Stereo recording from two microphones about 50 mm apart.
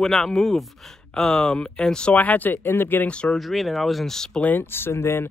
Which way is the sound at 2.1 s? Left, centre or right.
Left.